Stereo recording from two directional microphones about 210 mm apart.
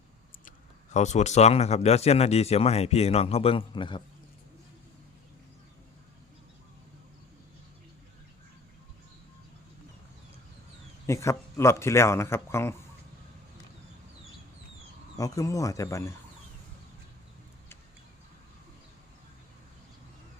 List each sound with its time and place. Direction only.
0.9 s speech: 35° left (ahead or behind)
11.0 s speech: 15° left (ahead or behind)
15.2 s speech: 15° left (ahead or behind)